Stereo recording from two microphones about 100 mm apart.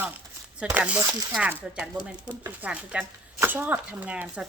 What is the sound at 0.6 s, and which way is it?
Speech, 15° right (ahead or behind).